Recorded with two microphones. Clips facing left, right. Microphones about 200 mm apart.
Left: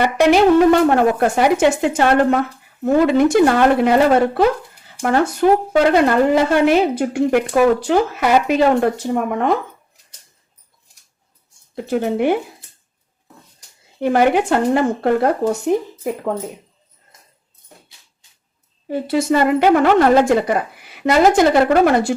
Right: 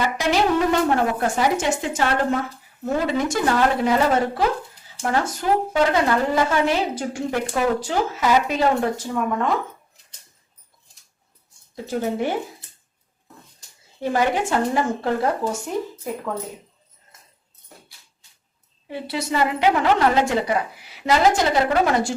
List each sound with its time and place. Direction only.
0.0 s music: 65° left (ahead or behind)
1.2 s a woman's voice: 65° left (ahead or behind)
11.7 s a woman's voice: 65° left (ahead or behind)
14.0 s a woman's voice: 60° left (ahead or behind)
18.9 s a woman's voice: 45° left (ahead or behind)